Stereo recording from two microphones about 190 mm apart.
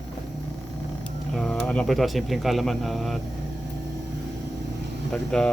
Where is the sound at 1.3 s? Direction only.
Centre (ahead or behind).